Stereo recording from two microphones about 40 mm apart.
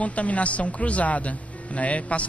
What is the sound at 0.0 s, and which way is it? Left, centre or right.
Speech, left.